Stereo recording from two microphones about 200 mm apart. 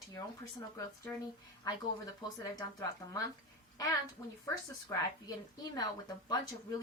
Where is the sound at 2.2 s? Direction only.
20° left (ahead or behind).